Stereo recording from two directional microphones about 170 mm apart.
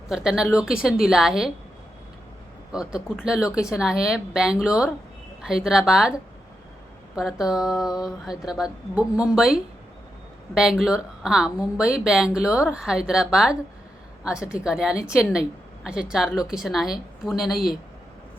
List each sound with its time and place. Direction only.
0.1 s a woman's voice: 5° right (ahead or behind)
2.7 s a woman's voice: 5° right (ahead or behind)
7.2 s a woman's voice: 5° right (ahead or behind)